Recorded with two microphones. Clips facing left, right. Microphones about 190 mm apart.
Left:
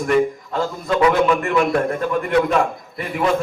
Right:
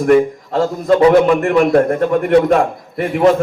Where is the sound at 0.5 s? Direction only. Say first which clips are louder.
Right 8 dB; 30° right (ahead or behind).